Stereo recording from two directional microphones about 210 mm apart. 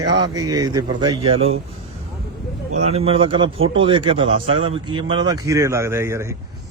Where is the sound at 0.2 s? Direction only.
15° right (ahead or behind).